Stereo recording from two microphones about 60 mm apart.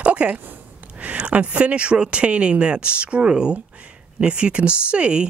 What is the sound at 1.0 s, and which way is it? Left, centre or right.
A woman's voice, right.